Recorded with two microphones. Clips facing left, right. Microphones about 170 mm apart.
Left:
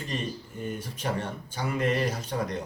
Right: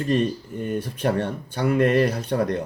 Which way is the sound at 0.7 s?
65° right (ahead or behind).